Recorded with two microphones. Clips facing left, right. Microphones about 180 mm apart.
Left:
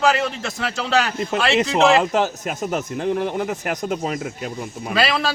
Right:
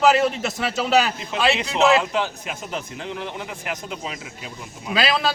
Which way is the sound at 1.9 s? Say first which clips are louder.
Left 3 dB; 45° left (ahead or behind).